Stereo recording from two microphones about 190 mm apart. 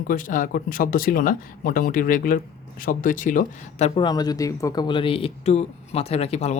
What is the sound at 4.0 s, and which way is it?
Speech, 20° left (ahead or behind).